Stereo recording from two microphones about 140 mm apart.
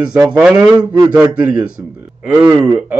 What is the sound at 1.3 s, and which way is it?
Speech, 10° right (ahead or behind).